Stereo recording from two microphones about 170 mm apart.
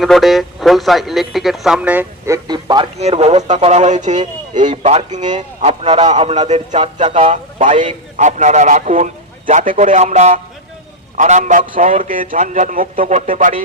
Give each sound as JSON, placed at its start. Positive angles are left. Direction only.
{"t": 0.0, "sound": "speech", "side_deg": 0}
{"t": 3.0, "sound": "a man's voice", "side_deg": -40}